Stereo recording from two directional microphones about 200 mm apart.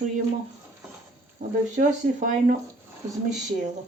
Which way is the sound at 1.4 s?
40° right (ahead or behind).